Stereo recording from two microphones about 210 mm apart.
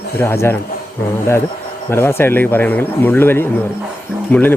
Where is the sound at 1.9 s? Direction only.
10° left (ahead or behind).